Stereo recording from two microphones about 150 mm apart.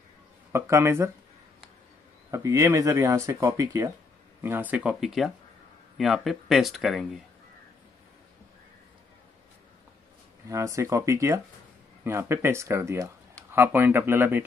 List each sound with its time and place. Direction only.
0.5 s speech: 20° right (ahead or behind)
2.3 s speech: 20° right (ahead or behind); by 7.2 s centre (ahead or behind)
10.5 s speech: 20° right (ahead or behind)